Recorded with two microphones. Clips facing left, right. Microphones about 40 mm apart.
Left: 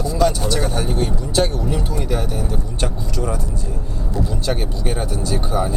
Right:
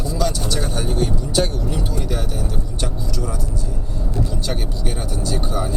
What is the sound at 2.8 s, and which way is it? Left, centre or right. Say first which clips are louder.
Speech: left 3 dB; left.